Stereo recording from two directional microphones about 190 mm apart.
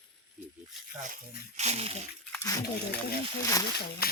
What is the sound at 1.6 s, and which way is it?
Speech, 35° right (ahead or behind).